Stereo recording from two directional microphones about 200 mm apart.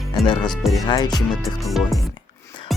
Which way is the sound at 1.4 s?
Centre (ahead or behind).